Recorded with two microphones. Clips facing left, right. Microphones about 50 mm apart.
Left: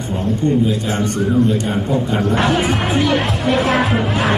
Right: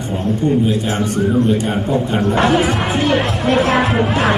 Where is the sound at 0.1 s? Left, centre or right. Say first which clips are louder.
Right 1 dB; centre.